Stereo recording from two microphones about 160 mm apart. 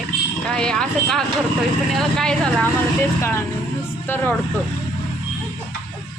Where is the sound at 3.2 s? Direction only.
15° left (ahead or behind).